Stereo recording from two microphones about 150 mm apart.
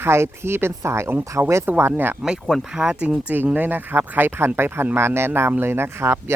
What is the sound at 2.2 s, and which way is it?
Speech, centre (ahead or behind).